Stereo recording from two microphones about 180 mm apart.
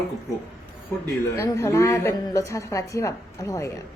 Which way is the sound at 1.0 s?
15° left (ahead or behind).